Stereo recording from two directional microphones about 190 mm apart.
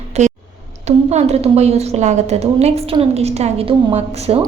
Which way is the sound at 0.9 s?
35° right (ahead or behind).